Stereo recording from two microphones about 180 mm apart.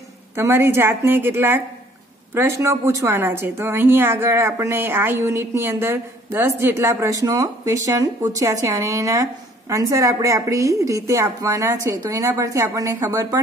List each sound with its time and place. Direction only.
0.4 s a woman's voice: 15° right (ahead or behind)